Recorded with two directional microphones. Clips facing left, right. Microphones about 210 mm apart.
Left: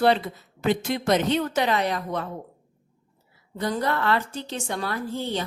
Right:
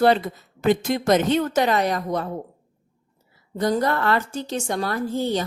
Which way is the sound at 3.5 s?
45° right (ahead or behind).